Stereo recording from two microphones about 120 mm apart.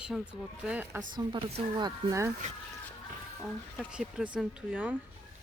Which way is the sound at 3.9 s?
10° right (ahead or behind).